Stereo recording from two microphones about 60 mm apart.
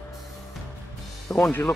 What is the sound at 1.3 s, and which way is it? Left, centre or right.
Speech, left.